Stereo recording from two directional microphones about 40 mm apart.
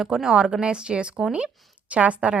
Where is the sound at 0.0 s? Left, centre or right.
Centre.